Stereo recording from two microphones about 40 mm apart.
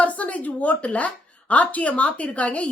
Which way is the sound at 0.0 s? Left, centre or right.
Left.